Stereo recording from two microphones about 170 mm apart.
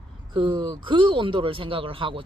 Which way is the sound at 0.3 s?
30° right (ahead or behind).